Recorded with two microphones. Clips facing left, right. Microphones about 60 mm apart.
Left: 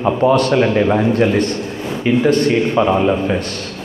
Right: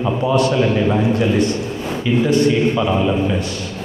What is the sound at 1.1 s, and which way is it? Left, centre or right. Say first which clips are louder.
A man's voice: left 2 dB; left.